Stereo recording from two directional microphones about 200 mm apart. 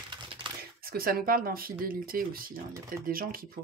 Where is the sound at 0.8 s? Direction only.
45° right (ahead or behind).